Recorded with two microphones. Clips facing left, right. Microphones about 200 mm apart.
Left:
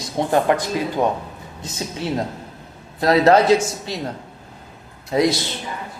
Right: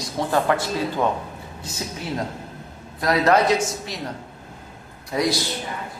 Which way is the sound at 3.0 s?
30° left (ahead or behind).